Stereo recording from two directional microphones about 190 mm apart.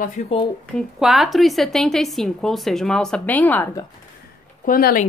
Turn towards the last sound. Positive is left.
turn(degrees=50)  # may be behind; listen again after turning